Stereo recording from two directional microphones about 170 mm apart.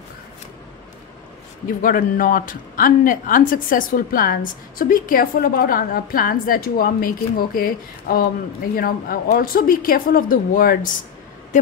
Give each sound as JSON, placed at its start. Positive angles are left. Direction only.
{"t": 1.8, "sound": "speech", "side_deg": 55}